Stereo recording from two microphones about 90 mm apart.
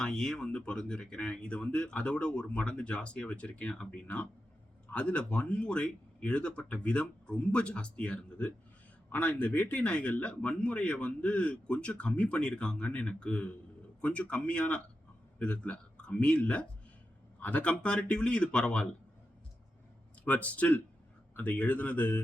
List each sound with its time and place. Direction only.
0.0 s a man's voice: 10° left (ahead or behind)
20.2 s a man's voice: 15° left (ahead or behind)